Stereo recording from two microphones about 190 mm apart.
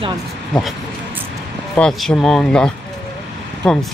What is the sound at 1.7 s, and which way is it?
Speech, 5° left (ahead or behind).